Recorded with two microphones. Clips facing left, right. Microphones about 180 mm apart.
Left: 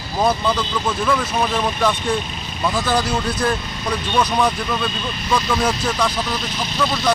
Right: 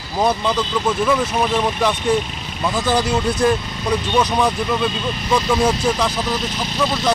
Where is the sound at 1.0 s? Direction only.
15° right (ahead or behind).